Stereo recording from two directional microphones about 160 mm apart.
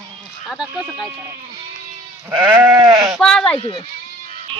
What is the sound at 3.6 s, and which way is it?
Speech, 30° left (ahead or behind).